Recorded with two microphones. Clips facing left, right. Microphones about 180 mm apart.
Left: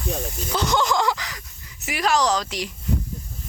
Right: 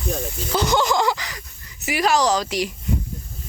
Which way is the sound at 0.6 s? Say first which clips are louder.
Right 2 dB; 5° right (ahead or behind).